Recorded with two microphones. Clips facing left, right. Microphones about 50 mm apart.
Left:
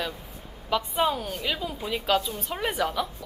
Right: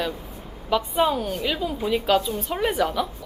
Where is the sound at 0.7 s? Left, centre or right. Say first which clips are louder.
Right 4 dB; right.